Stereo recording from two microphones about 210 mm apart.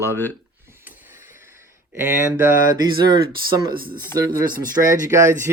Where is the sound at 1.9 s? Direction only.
10° right (ahead or behind).